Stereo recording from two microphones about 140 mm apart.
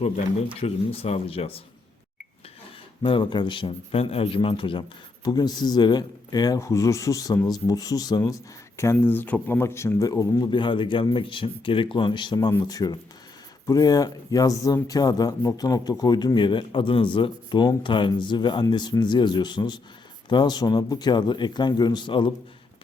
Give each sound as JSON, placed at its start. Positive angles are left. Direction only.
{"t": 0.6, "sound": "speech", "side_deg": 45}
{"t": 3.0, "sound": "speech", "side_deg": 35}